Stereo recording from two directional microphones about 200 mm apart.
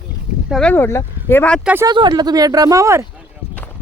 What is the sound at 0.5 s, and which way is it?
Speech, 5° left (ahead or behind).